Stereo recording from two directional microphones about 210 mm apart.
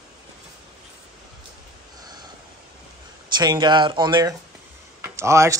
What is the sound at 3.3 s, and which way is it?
Speech, 20° right (ahead or behind).